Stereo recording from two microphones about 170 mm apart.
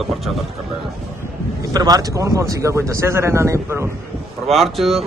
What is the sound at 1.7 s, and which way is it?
Speech, 20° right (ahead or behind).